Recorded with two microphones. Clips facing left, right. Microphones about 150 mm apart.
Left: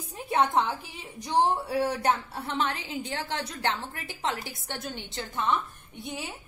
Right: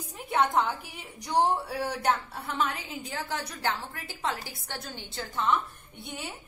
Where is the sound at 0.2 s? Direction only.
25° left (ahead or behind).